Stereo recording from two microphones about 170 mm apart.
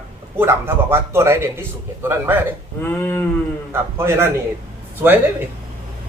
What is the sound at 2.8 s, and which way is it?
Cattle, 10° left (ahead or behind).